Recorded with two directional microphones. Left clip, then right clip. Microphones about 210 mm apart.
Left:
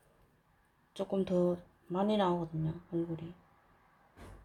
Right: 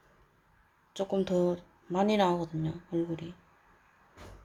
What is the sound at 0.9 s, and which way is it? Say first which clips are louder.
Speech: right 4 dB; 5° right (ahead or behind).